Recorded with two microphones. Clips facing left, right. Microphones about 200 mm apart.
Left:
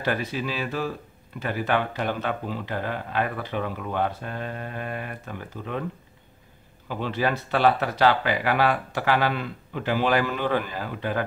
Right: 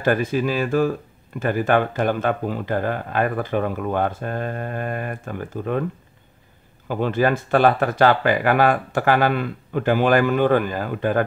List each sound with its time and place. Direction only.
0.0 s speech: 50° right (ahead or behind)
6.9 s speech: 50° right (ahead or behind)